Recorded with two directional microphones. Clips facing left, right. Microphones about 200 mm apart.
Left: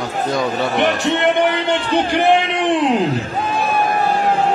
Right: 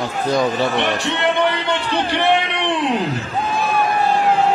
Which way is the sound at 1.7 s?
45° left (ahead or behind).